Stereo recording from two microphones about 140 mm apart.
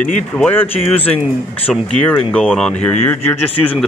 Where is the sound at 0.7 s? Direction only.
45° left (ahead or behind).